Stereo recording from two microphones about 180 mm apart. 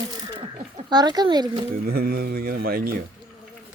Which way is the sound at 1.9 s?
55° right (ahead or behind).